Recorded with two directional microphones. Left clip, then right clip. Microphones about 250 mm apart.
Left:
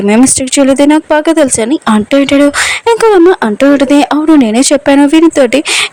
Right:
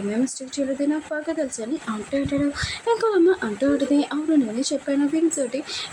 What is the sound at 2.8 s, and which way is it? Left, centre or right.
Speech, left.